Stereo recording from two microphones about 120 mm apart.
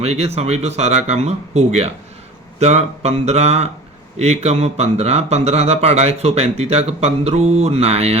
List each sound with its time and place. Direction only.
0.0 s speech: 60° right (ahead or behind)